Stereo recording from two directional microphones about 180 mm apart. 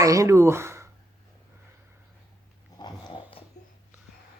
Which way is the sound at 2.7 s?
25° left (ahead or behind).